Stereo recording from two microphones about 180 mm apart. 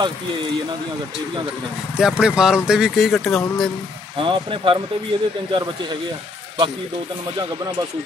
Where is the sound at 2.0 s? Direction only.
5° right (ahead or behind).